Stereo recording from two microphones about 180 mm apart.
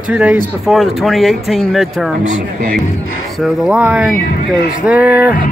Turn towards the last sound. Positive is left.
turn(degrees=-10)  # may be behind; listen again after turning